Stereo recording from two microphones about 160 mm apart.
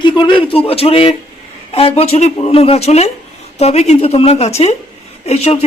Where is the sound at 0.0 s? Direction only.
30° left (ahead or behind).